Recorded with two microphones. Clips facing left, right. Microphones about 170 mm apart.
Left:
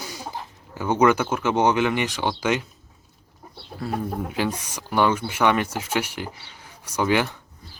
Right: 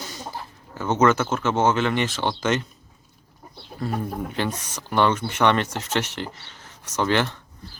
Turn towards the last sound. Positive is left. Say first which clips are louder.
# even
turn(degrees=10)  # may be behind; listen again after turning